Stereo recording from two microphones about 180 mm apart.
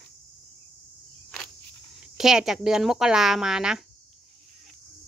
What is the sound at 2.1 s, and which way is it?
Speech, centre (ahead or behind).